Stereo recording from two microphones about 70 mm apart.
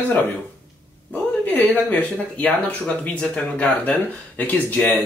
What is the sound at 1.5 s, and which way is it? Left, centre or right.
Speech, left.